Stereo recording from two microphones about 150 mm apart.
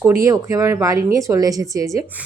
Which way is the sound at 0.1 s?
20° right (ahead or behind).